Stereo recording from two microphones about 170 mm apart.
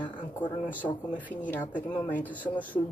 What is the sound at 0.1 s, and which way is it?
Speech, 25° left (ahead or behind).